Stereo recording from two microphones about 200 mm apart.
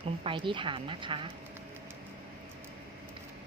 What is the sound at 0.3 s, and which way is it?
A woman's voice, 25° right (ahead or behind).